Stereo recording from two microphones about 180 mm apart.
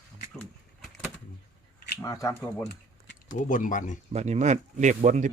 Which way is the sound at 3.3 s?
45° left (ahead or behind).